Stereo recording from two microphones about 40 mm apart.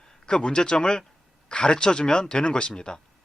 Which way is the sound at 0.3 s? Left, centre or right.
Left.